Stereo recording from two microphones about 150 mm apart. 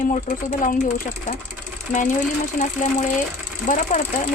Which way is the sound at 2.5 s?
55° left (ahead or behind).